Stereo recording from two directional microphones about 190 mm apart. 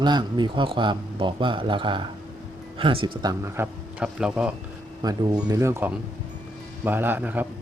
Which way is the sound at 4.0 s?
5° right (ahead or behind).